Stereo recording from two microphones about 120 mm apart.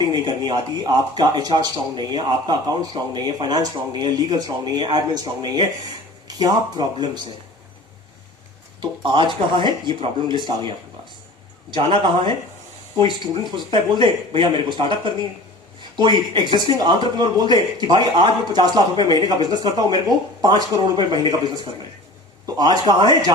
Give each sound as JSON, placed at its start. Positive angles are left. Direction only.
{"t": 0.0, "sound": "speech", "side_deg": -40}
{"t": 8.8, "sound": "speech", "side_deg": -45}
{"t": 22.4, "sound": "speech", "side_deg": -35}